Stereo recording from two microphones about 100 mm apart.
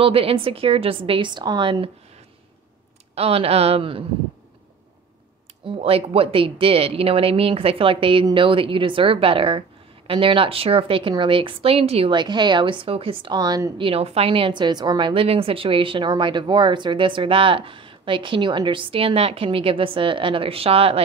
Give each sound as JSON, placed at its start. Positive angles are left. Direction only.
{"t": 0.0, "sound": "speech", "side_deg": -70}
{"t": 3.2, "sound": "speech", "side_deg": -85}
{"t": 5.7, "sound": "speech", "side_deg": -75}
{"t": 12.1, "sound": "a woman's voice", "side_deg": -50}
{"t": 13.7, "sound": "speech", "side_deg": -70}
{"t": 15.2, "sound": "speech", "side_deg": -70}